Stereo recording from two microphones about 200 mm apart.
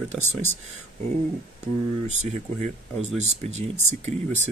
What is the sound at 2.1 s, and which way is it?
Speech, 35° right (ahead or behind).